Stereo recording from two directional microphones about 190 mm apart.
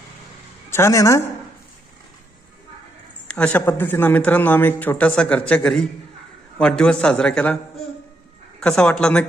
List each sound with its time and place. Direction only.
0.7 s speech: 15° left (ahead or behind)
3.2 s a man's voice: 5° left (ahead or behind)
8.6 s a man's voice: 5° left (ahead or behind)